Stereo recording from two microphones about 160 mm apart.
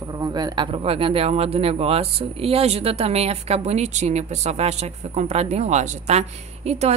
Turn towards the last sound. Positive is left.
turn(degrees=-45)  # may be behind; listen again after turning